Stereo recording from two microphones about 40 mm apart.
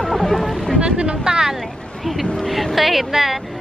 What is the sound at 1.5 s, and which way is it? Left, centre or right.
Speech, centre.